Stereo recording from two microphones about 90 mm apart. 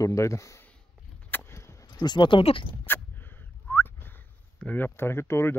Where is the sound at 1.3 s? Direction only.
25° left (ahead or behind); by 2.6 s 80° left.